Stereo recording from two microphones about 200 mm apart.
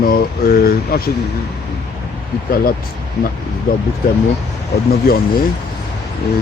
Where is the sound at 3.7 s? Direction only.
50° left (ahead or behind).